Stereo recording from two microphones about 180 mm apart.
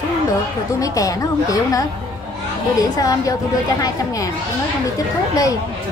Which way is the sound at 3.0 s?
20° left (ahead or behind).